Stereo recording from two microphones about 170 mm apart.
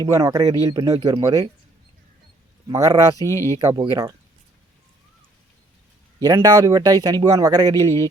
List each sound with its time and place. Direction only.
0.0 s speech: 20° right (ahead or behind)
2.6 s speech: 25° right (ahead or behind)
3.2 s speech: 15° left (ahead or behind)
3.7 s speech: 20° right (ahead or behind)
6.1 s speech: 20° right (ahead or behind)